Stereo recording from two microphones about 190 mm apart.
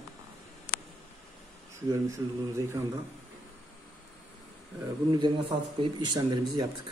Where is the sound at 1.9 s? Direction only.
15° right (ahead or behind).